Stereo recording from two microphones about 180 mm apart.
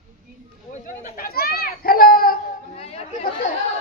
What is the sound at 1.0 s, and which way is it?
Children playing, 50° left (ahead or behind).